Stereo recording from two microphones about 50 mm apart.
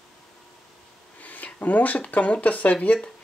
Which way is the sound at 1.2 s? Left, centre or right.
Left.